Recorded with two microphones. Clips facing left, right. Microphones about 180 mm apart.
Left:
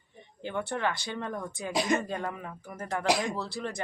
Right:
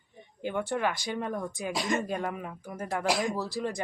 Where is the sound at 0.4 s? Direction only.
15° right (ahead or behind).